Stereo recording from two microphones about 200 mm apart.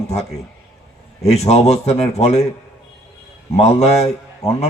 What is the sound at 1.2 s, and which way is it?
A man's voice, 30° left (ahead or behind).